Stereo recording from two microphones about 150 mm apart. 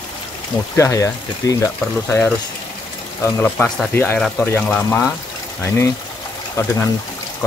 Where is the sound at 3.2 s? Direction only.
10° left (ahead or behind).